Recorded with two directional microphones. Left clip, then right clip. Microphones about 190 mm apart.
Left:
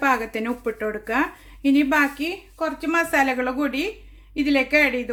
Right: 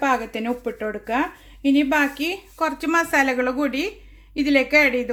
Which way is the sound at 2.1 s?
25° right (ahead or behind).